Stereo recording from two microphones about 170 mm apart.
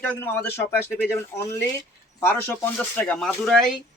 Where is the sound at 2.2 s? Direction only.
15° left (ahead or behind).